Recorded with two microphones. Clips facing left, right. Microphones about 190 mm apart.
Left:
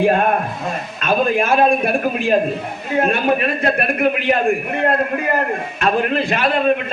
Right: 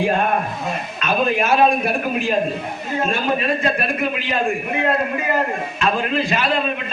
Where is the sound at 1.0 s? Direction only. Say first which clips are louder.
Left 2 dB; 50° left (ahead or behind).